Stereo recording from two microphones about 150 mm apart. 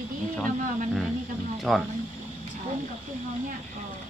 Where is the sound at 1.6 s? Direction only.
Centre (ahead or behind).